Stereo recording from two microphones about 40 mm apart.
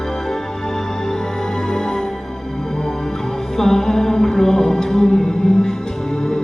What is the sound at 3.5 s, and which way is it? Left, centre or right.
Music, centre.